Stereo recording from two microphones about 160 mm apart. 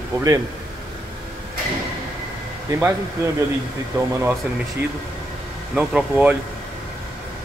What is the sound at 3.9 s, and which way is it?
Speech, 15° right (ahead or behind).